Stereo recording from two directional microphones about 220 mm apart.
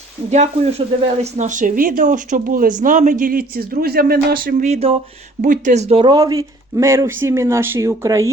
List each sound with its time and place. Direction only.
0.3 s a woman's voice: 30° right (ahead or behind); by 8.3 s 15° right (ahead or behind)